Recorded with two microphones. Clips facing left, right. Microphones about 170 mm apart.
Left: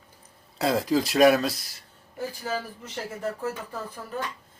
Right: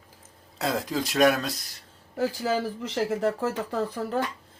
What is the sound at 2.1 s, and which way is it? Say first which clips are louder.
Speech: right 5 dB; 90° right.